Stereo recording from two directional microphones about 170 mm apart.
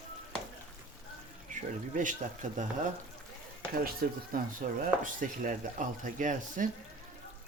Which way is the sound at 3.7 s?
60° right (ahead or behind).